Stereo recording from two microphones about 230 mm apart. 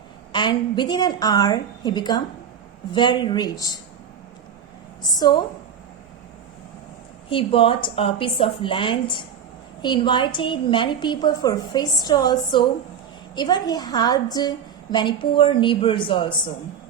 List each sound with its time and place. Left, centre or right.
0.3 s a woman's voice: centre
7.3 s a woman's voice: left